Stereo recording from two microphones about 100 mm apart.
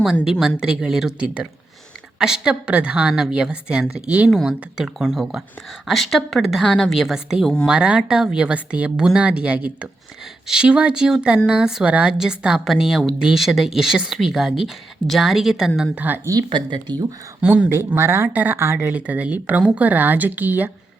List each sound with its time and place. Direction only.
0.3 s a woman's voice: 5° right (ahead or behind)
16.0 s speech: 20° right (ahead or behind)
16.5 s speech: 45° right (ahead or behind)
17.4 s speech: 15° right (ahead or behind)